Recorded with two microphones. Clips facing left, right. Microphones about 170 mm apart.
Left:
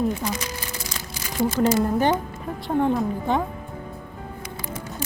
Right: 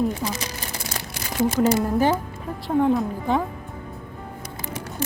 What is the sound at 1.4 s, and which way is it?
Speech, 80° right.